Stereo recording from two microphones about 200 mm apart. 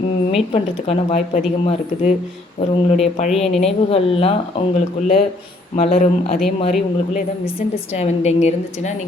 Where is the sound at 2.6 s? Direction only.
30° left (ahead or behind).